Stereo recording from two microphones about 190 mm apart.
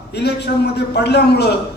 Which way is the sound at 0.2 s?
60° left (ahead or behind).